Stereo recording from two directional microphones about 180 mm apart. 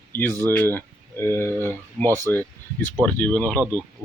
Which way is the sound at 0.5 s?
10° left (ahead or behind).